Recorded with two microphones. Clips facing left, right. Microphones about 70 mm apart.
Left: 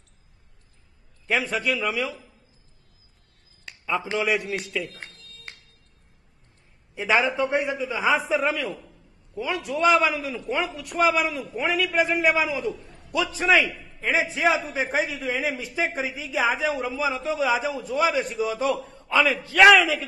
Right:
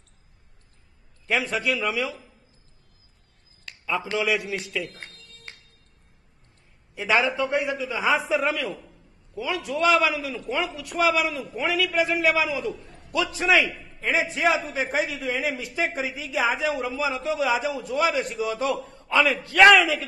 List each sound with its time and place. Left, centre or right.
1.2 s a man's voice: centre
3.8 s a man's voice: centre
7.1 s a man's voice: centre
15.0 s a man's voice: centre